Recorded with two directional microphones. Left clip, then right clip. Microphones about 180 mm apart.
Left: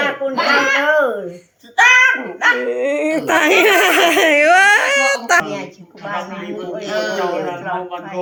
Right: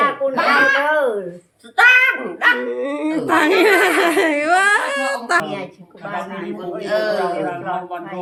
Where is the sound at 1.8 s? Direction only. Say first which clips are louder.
Left 1 dB; 15° right (ahead or behind).